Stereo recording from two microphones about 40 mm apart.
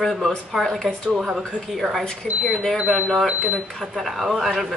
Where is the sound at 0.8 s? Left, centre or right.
Right.